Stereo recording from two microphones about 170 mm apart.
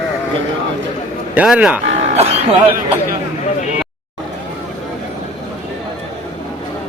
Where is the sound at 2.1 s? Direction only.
40° right (ahead or behind).